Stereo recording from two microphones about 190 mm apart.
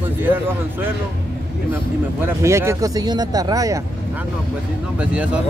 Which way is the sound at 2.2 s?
15° right (ahead or behind).